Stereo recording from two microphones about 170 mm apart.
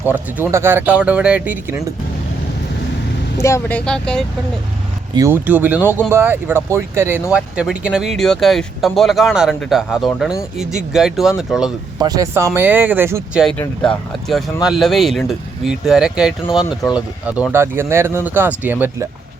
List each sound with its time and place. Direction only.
0.0 s speech: 10° right (ahead or behind)
3.4 s speech: 15° left (ahead or behind)
5.1 s speech: 15° right (ahead or behind)
11.9 s speech: 20° right (ahead or behind)
13.4 s speech: 5° left (ahead or behind); by 19.0 s 10° right (ahead or behind)